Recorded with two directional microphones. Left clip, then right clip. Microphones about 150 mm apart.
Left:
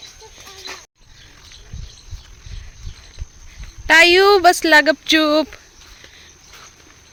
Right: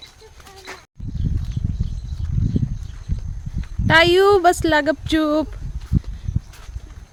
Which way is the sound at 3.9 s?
15° right (ahead or behind).